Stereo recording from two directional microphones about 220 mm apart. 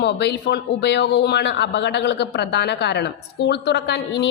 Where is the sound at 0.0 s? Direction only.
50° left (ahead or behind).